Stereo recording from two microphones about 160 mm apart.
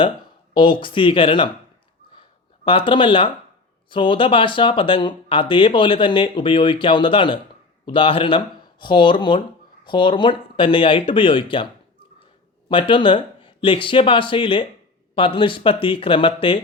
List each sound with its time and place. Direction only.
0.5 s speech: 30° left (ahead or behind)
2.6 s speech: 30° left (ahead or behind)